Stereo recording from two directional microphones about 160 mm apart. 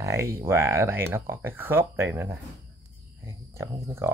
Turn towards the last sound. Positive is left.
turn(degrees=-15)  # may be behind; listen again after turning